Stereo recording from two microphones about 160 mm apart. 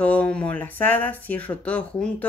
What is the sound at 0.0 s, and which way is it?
Speech, 10° left (ahead or behind).